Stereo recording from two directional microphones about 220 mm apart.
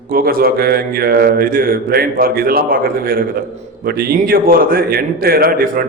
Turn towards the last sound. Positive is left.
turn(degrees=-40)  # may be behind; listen again after turning